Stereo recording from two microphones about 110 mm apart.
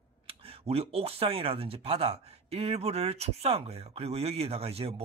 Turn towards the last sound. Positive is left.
turn(degrees=-65)  # may be behind; listen again after turning